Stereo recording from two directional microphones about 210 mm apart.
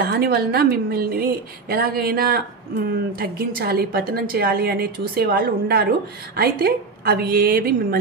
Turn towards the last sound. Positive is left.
turn(degrees=-45)  # may be behind; listen again after turning